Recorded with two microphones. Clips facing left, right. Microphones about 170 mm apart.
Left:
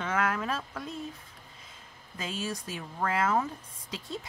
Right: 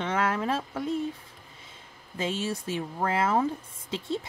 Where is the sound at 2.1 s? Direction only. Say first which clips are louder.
Right 5 dB; 25° right (ahead or behind).